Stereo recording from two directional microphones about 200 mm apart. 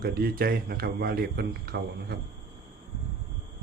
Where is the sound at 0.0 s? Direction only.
50° right (ahead or behind).